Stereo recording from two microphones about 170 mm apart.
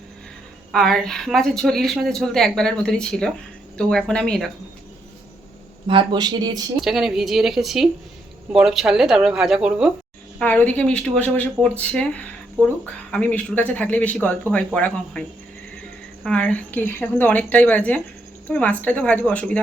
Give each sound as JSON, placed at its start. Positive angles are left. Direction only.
{"t": 0.7, "sound": "a woman's voice", "side_deg": 5}
{"t": 5.9, "sound": "speech", "side_deg": -30}
{"t": 6.8, "sound": "a woman's voice", "side_deg": 0}
{"t": 10.4, "sound": "a woman's voice", "side_deg": 10}
{"t": 16.2, "sound": "a woman's voice", "side_deg": 10}